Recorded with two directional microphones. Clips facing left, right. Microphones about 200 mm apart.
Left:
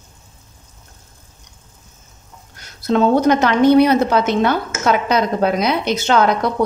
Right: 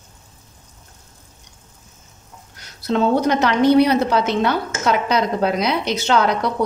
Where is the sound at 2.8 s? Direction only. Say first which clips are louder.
Left 4 dB; 50° left (ahead or behind).